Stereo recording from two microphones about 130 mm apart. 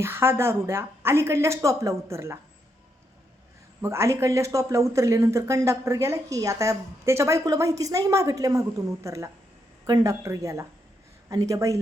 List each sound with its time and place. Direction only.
0.0 s speech: 20° right (ahead or behind)
3.8 s speech: 20° right (ahead or behind)